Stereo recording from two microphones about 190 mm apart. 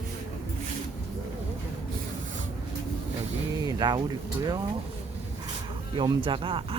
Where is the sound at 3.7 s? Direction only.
20° right (ahead or behind).